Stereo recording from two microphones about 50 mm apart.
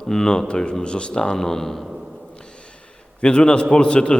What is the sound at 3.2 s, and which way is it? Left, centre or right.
A man's voice, centre.